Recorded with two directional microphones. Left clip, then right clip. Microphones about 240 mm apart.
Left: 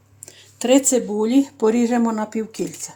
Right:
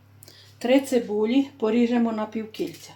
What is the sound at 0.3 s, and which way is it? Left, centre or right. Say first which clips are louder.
Speech: left 4 dB; left.